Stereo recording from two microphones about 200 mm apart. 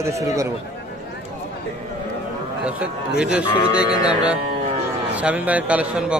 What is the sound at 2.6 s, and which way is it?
A man's voice, 5° right (ahead or behind).